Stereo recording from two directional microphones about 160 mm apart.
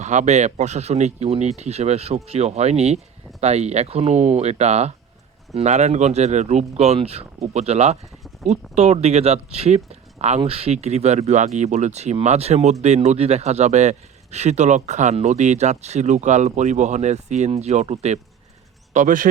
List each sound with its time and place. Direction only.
0.0 s speech: 45° right (ahead or behind)
18.9 s speech: 55° right (ahead or behind)